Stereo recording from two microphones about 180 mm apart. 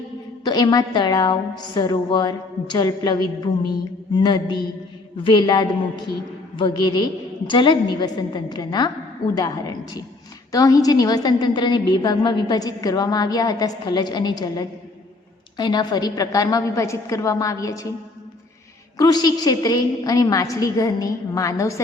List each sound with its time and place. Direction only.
0.4 s a woman's voice: 20° left (ahead or behind)
18.9 s a woman's voice: 20° left (ahead or behind)